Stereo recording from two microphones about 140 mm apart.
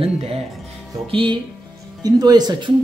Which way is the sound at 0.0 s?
45° right (ahead or behind).